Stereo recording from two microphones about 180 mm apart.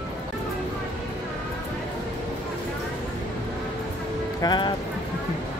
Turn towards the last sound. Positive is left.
turn(degrees=25)  # may be behind; listen again after turning